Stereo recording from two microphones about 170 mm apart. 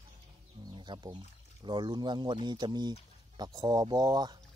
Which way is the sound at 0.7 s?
25° right (ahead or behind).